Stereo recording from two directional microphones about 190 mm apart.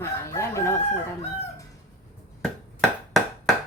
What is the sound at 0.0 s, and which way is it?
Crowing, 15° left (ahead or behind).